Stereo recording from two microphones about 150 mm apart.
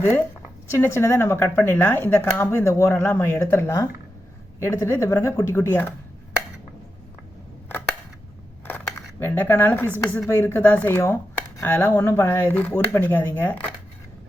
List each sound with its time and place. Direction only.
0.8 s speech: 15° left (ahead or behind)
8.6 s speech: 15° left (ahead or behind)